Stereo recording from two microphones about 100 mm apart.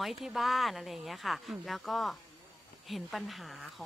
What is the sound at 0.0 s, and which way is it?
A woman's voice, centre (ahead or behind).